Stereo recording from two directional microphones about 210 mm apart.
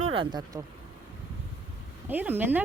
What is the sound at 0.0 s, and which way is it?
Speech, 25° right (ahead or behind).